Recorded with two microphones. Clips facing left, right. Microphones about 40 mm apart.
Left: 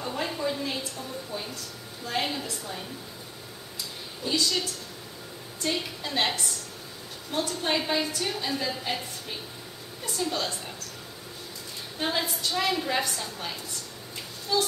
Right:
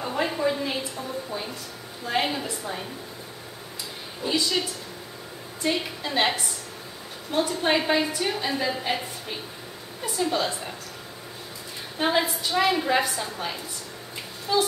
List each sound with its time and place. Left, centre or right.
0.0 s a woman's voice: centre
4.2 s a woman's voice: centre
12.0 s a woman's voice: centre